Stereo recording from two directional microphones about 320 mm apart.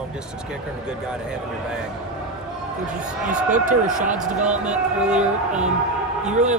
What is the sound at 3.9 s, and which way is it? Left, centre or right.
Speech, centre.